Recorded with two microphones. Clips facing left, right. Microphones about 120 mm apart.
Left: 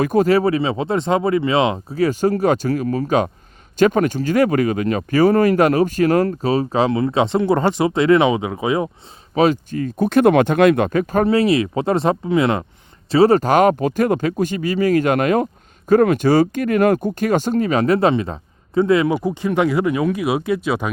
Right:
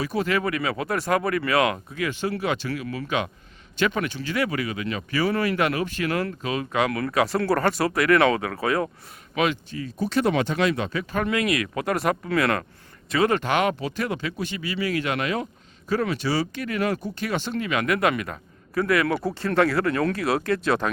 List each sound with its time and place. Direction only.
0.0 s speech: 45° left (ahead or behind); by 8.9 s 20° left (ahead or behind)
9.3 s speech: 40° left (ahead or behind); by 12.6 s 20° left (ahead or behind)
13.1 s speech: 35° left (ahead or behind); by 20.9 s 10° left (ahead or behind)